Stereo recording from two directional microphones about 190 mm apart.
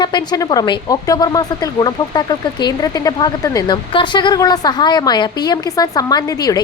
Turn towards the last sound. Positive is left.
turn(degrees=20)  # may be behind; listen again after turning